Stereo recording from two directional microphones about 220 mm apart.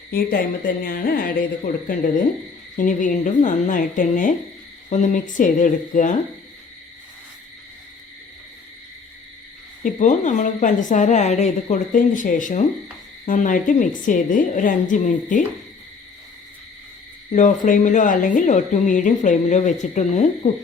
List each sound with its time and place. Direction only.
0.1 s speech: 45° left (ahead or behind)
9.8 s speech: 35° left (ahead or behind)
17.3 s speech: 35° left (ahead or behind)